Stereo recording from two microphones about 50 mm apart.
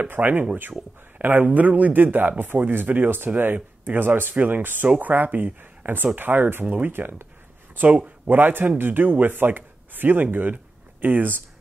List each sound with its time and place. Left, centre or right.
0.1 s a man's voice: right
7.7 s a man's voice: right